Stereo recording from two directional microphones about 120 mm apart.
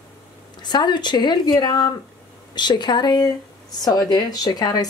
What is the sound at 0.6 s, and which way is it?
Speech, 40° left (ahead or behind).